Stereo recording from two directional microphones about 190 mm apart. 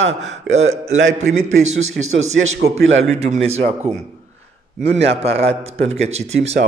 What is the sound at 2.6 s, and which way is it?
Speech, 85° right.